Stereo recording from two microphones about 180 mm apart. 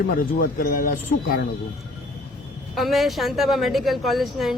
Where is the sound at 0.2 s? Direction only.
50° left (ahead or behind).